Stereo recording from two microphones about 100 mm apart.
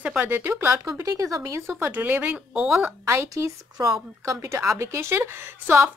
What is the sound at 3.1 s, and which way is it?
A woman's voice, 30° right (ahead or behind).